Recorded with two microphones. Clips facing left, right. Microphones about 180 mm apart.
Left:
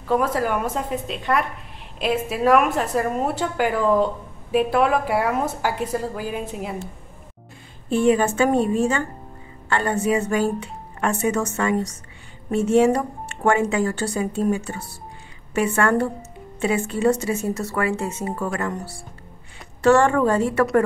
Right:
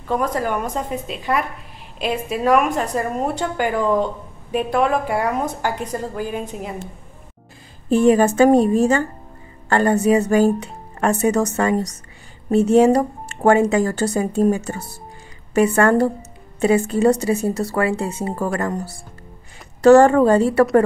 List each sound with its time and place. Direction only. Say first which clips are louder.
0.1 s a woman's voice: even; 5° left (ahead or behind)
7.9 s speech: right 4 dB; 40° right (ahead or behind)